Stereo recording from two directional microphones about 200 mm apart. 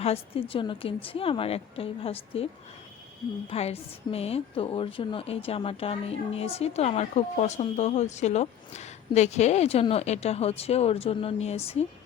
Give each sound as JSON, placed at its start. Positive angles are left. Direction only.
{"t": 0.0, "sound": "a woman's voice", "side_deg": 30}
{"t": 3.5, "sound": "a woman's voice", "side_deg": 30}